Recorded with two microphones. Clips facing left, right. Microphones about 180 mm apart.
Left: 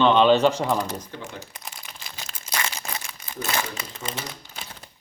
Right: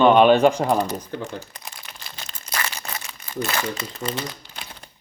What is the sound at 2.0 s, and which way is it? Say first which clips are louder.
Crumpling: even; 10° left (ahead or behind).